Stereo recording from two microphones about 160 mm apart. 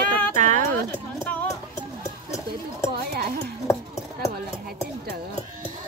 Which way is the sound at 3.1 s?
70° right (ahead or behind).